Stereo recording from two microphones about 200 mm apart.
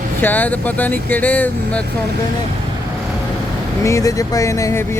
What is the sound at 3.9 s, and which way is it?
Speech, 15° left (ahead or behind).